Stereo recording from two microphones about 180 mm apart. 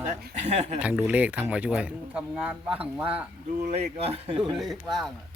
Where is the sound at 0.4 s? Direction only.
40° right (ahead or behind).